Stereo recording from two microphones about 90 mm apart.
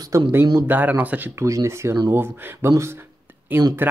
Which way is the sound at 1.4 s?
35° right (ahead or behind).